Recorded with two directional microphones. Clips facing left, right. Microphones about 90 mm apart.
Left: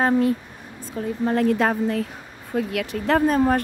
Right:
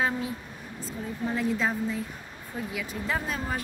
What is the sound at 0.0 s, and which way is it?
Speech, 60° left (ahead or behind).